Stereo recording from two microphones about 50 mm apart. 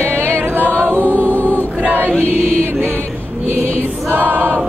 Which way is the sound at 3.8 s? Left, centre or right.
Right.